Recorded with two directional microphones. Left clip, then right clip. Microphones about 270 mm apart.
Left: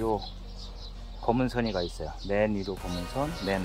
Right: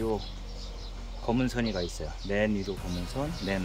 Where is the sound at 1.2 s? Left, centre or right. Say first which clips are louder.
Left 2 dB; centre.